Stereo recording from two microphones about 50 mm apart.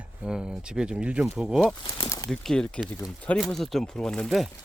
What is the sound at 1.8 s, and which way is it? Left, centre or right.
Speech, left.